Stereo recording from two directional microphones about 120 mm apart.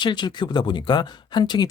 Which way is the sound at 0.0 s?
40° left (ahead or behind).